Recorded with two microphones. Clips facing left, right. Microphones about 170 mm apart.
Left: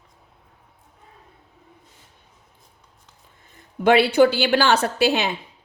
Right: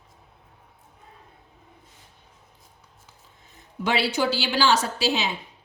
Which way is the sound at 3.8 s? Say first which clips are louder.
Left 9 dB; 55° left (ahead or behind).